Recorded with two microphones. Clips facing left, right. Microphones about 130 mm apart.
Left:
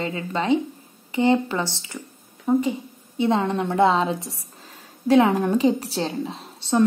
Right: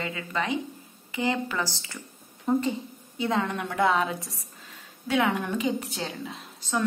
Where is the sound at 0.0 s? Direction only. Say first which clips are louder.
Left 5 dB; 25° left (ahead or behind).